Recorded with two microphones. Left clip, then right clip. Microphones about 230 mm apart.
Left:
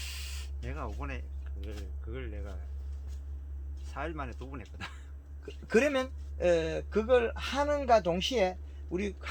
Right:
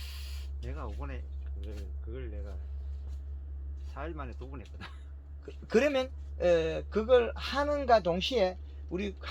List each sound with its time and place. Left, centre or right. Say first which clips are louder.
0.0 s a sound: left 5 dB; left
1.6 s speech: left 2 dB; left
3.9 s speech: left 3 dB; left
5.6 s speech: even; centre